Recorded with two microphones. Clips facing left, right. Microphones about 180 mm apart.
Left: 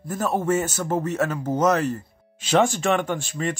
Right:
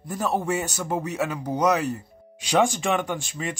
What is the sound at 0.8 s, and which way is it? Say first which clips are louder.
Speech: left 3 dB; 15° right (ahead or behind).